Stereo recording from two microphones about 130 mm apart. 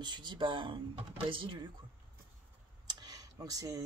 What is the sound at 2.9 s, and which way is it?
Tick-tock, 30° right (ahead or behind).